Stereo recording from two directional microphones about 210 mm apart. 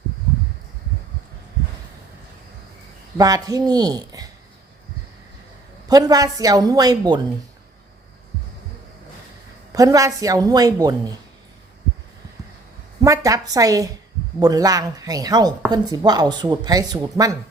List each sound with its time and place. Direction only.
3.2 s a woman's voice: 15° right (ahead or behind)
5.9 s a woman's voice: 15° right (ahead or behind)
9.7 s a woman's voice: 15° right (ahead or behind)
13.0 s a woman's voice: 15° right (ahead or behind)